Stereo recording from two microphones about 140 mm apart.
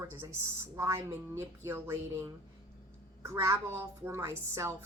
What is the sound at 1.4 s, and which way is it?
A woman's voice, 20° right (ahead or behind).